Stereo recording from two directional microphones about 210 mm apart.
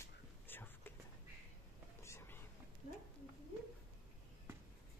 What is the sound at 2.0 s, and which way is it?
Whispering, 10° left (ahead or behind).